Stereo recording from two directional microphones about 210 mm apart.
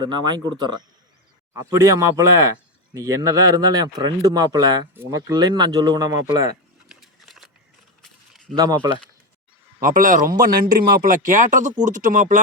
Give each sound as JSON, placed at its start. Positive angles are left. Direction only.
{"t": 0.0, "sound": "speech", "side_deg": -20}
{"t": 6.8, "sound": "a sound", "side_deg": 0}
{"t": 8.5, "sound": "speech", "side_deg": -20}
{"t": 9.8, "sound": "speech", "side_deg": -40}